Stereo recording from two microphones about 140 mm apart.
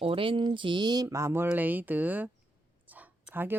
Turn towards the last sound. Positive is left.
turn(degrees=-10)  # may be behind; listen again after turning